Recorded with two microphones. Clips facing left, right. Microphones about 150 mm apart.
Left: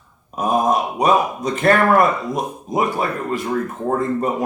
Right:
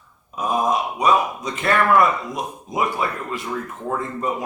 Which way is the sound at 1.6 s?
45° left (ahead or behind).